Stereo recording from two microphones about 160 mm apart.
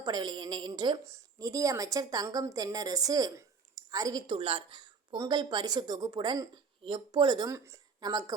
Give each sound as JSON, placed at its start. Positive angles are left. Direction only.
{"t": 0.0, "sound": "a woman's voice", "side_deg": -25}